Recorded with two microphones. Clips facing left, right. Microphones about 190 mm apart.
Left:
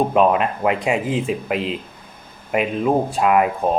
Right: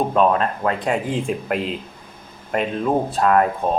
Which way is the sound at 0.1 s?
15° left (ahead or behind).